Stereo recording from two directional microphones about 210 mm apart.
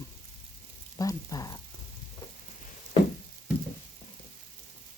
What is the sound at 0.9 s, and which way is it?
Speech, 15° left (ahead or behind).